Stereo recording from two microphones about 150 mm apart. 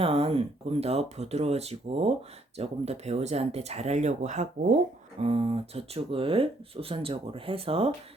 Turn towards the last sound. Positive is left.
turn(degrees=-40)  # may be behind; listen again after turning